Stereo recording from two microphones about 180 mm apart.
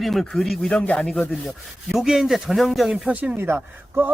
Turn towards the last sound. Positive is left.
turn(degrees=-15)  # may be behind; listen again after turning